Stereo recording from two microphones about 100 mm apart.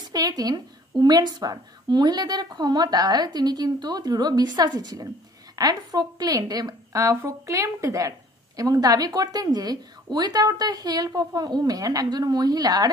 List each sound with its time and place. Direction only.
0.0 s a woman's voice: 40° right (ahead or behind)